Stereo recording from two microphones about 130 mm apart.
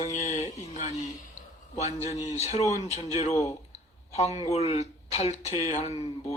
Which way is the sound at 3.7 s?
55° left (ahead or behind).